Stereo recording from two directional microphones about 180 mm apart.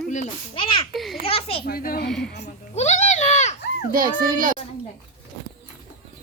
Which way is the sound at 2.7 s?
40° left (ahead or behind).